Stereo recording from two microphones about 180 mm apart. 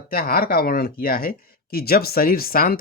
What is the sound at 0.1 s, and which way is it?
Speech, 55° left (ahead or behind).